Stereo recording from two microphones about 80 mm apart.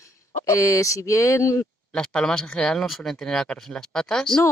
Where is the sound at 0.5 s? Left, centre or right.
Left.